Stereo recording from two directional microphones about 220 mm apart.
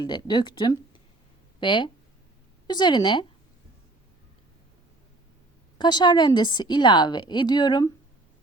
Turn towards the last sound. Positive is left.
turn(degrees=20)  # may be behind; listen again after turning